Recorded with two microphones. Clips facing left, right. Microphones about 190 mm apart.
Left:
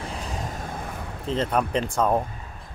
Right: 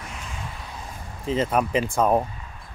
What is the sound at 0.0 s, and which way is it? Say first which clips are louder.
Vehicle: left 5 dB; 35° left (ahead or behind).